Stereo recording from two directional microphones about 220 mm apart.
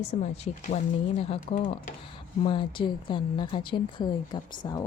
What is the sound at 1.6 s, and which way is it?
Speech, 35° left (ahead or behind).